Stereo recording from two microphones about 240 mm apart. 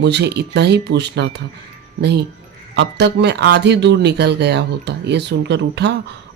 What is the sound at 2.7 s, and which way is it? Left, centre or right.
Speech, right.